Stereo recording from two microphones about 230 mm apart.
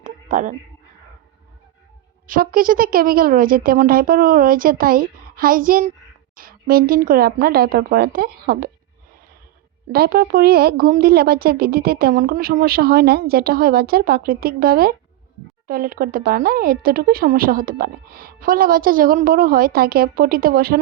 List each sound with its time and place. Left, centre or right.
0.0 s a sound: right
2.2 s speech: right
9.9 s speech: right